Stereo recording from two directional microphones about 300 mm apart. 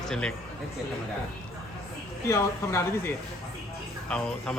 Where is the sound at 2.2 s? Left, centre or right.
Centre.